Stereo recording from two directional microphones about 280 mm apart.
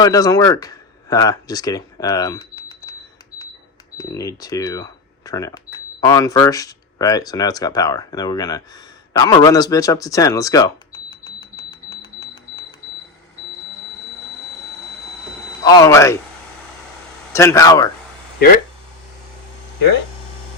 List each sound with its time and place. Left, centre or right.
0.0 s speech: centre
3.9 s speech: centre
12.2 s a sound: centre
15.6 s speech: centre
17.3 s speech: centre
18.3 s speech: left